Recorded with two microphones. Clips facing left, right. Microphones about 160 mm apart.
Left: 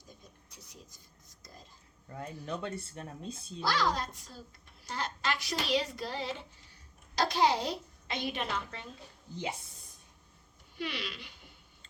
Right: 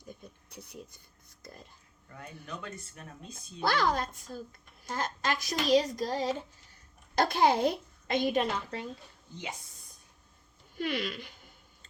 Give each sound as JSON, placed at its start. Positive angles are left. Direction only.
{"t": 0.5, "sound": "speech", "side_deg": -60}
{"t": 2.0, "sound": "speech", "side_deg": 30}
{"t": 3.6, "sound": "a child's voice", "side_deg": -55}
{"t": 7.2, "sound": "a child's voice", "side_deg": -55}
{"t": 10.8, "sound": "a child's voice", "side_deg": -45}